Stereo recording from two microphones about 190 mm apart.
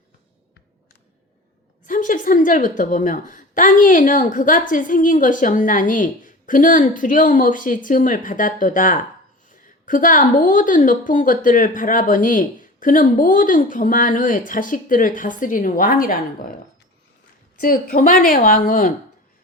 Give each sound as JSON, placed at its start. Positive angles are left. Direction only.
{"t": 1.9, "sound": "a woman's voice", "side_deg": 45}
{"t": 17.6, "sound": "a woman's voice", "side_deg": 50}